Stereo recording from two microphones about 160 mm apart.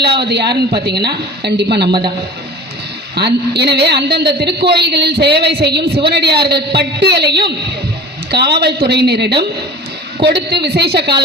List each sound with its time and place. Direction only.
0.0 s a man's voice: 90° right
3.2 s a man's voice: 90° right